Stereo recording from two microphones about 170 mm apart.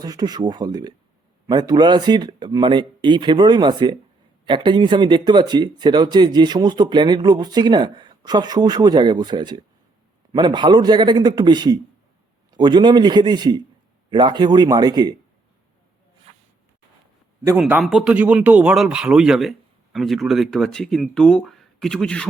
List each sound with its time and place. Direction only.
0.0 s speech: 25° right (ahead or behind)
16.3 s zipper: 35° right (ahead or behind)
17.4 s speech: 10° right (ahead or behind); by 22.3 s 5° left (ahead or behind)